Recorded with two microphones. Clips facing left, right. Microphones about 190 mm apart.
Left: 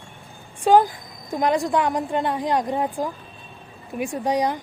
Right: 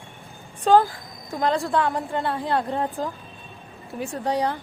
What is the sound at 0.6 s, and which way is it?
A woman's voice, 15° left (ahead or behind).